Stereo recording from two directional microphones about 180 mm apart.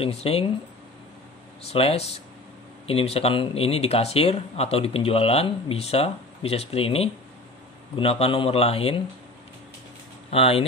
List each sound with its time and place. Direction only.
0.0 s speech: 35° left (ahead or behind)
1.7 s speech: 35° left (ahead or behind)
10.3 s speech: 30° left (ahead or behind)